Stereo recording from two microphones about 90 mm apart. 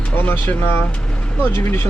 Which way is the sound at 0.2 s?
25° left (ahead or behind).